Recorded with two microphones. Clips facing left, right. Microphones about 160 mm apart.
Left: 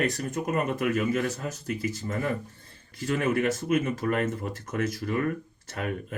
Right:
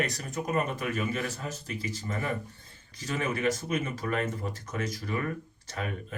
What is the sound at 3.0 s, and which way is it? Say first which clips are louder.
Speech: left 4 dB; 50° left (ahead or behind).